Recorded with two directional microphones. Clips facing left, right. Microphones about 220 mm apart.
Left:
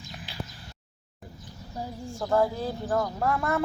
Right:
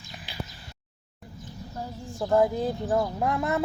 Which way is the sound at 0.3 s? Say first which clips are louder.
Right 1 dB; centre (ahead or behind).